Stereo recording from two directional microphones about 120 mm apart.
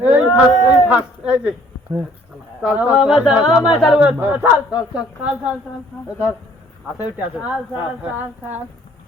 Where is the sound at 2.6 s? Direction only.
10° right (ahead or behind).